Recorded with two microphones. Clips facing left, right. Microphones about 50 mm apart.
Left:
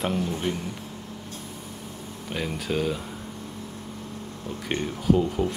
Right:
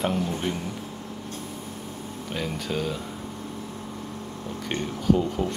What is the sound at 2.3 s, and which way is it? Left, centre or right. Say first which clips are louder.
Speech: left 1 dB; centre.